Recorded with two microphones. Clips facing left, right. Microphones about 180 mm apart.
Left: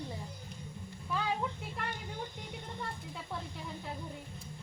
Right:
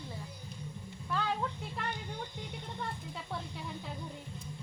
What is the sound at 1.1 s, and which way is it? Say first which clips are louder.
Music: even; 10° left (ahead or behind).